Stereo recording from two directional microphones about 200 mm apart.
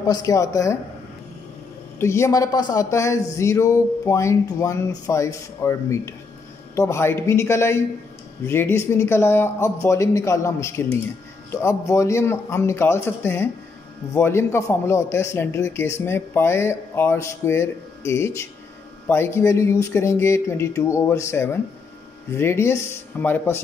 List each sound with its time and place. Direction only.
0.0 s a man's voice: 15° left (ahead or behind)
2.0 s a man's voice: 15° left (ahead or behind)